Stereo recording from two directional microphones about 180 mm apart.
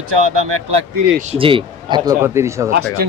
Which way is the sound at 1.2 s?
35° right (ahead or behind).